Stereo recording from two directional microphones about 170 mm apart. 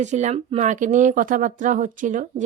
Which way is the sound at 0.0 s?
45° right (ahead or behind).